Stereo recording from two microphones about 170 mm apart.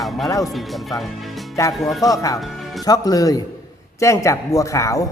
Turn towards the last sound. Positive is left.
turn(degrees=20)  # may be behind; listen again after turning